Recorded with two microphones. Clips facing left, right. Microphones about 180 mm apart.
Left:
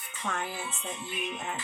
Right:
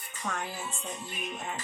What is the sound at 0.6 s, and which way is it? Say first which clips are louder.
Music: left 1 dB; 40° right (ahead or behind).